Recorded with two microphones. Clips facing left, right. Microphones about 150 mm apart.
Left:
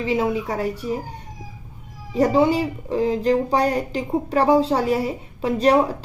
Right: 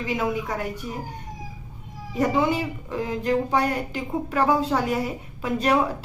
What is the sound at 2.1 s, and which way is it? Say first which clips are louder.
Speech: left 5 dB; 35° left (ahead or behind).